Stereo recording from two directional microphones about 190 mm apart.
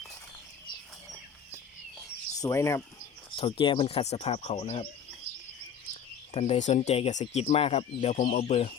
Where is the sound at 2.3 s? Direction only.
15° left (ahead or behind).